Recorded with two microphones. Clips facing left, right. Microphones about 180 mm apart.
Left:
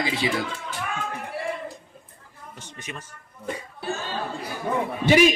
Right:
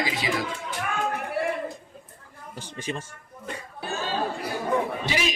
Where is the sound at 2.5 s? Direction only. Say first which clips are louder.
Right 7 dB; 30° right (ahead or behind).